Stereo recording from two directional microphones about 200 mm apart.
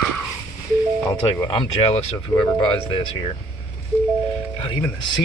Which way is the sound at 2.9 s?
25° left (ahead or behind).